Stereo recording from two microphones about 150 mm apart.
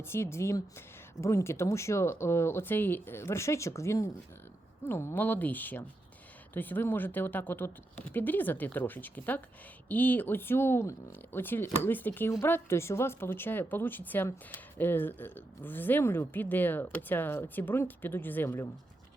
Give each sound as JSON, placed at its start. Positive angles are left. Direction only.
{"t": 0.0, "sound": "speech", "side_deg": 15}